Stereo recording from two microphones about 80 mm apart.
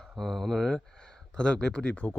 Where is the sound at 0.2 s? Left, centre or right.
Centre.